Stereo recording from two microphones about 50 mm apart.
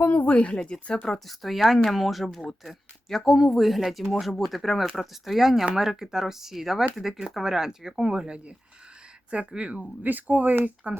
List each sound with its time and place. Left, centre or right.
0.1 s speech: left; by 0.9 s centre
1.3 s speech: centre; by 11.0 s right